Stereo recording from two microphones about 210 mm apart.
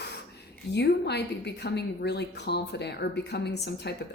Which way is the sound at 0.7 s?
55° left (ahead or behind).